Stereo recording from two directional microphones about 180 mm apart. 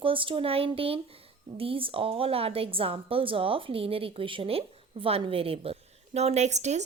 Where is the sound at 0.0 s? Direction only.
30° right (ahead or behind).